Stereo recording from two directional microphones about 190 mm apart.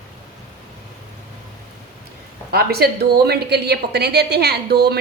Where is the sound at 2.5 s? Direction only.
55° right (ahead or behind).